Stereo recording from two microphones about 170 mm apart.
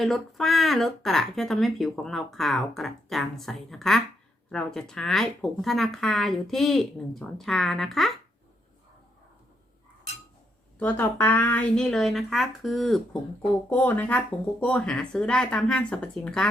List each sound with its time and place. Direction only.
0.0 s speech: centre (ahead or behind)
10.8 s speech: 10° left (ahead or behind)